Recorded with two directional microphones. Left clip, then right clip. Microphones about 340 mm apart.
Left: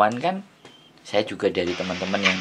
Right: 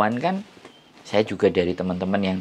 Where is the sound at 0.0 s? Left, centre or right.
Right.